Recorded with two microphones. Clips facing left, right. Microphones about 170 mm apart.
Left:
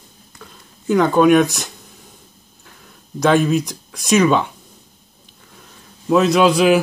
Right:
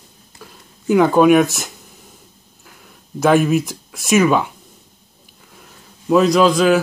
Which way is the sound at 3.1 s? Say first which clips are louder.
Right 1 dB; 5° right (ahead or behind).